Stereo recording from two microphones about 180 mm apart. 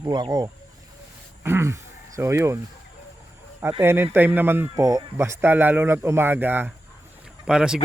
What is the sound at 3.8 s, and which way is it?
Speech, 15° right (ahead or behind).